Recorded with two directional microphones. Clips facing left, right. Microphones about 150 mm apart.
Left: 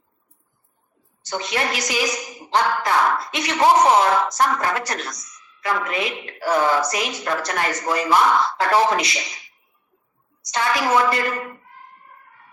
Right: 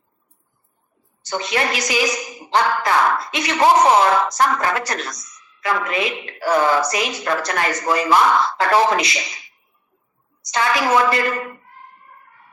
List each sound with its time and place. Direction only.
1.3 s a woman's voice: 90° right
10.5 s a woman's voice: 90° right